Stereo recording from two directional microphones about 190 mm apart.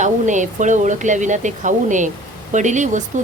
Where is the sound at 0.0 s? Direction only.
40° right (ahead or behind).